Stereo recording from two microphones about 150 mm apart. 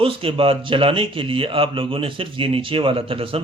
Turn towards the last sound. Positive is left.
turn(degrees=-35)  # may be behind; listen again after turning